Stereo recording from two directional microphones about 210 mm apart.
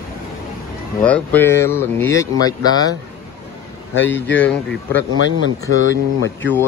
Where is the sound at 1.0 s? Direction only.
5° left (ahead or behind).